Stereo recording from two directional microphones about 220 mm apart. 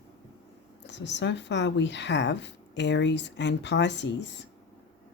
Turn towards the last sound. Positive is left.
turn(degrees=55)  # may be behind; listen again after turning